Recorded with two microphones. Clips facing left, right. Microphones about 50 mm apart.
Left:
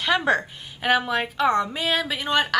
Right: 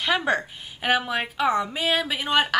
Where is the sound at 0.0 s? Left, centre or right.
Centre.